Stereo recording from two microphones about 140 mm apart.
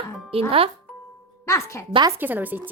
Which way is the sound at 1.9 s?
30° right (ahead or behind).